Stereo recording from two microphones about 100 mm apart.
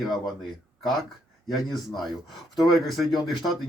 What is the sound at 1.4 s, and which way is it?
Speech, centre (ahead or behind).